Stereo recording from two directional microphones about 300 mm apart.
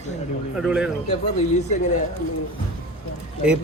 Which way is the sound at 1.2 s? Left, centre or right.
Left.